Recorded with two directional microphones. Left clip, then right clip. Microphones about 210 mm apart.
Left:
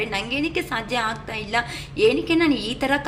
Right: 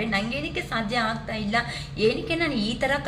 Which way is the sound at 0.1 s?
50° left (ahead or behind).